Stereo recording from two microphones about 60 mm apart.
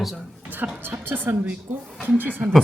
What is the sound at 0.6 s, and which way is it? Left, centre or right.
A woman's voice, right.